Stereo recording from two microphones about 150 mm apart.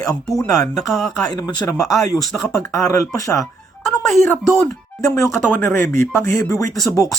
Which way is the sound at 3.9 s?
Centre (ahead or behind).